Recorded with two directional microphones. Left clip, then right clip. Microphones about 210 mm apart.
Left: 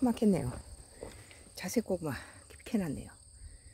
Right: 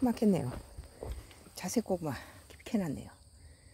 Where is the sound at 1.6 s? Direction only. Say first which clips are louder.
Even; centre (ahead or behind).